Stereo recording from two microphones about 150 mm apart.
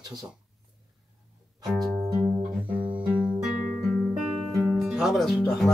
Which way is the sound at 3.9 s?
10° left (ahead or behind).